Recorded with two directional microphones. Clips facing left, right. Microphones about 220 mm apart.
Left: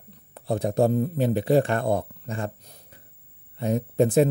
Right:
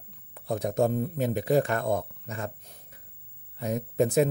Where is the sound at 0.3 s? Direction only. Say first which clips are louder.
Left 3 dB; 30° left (ahead or behind).